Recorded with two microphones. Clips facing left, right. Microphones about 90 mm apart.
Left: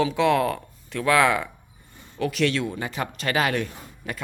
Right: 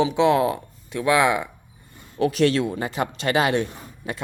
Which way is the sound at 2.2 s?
35° right (ahead or behind).